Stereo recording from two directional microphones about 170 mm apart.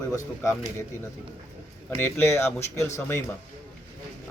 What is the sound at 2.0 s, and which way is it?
Speech, 15° left (ahead or behind).